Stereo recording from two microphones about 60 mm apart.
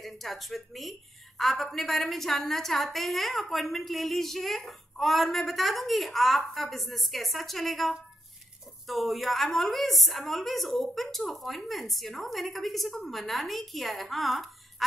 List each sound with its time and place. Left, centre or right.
0.0 s a woman's voice: centre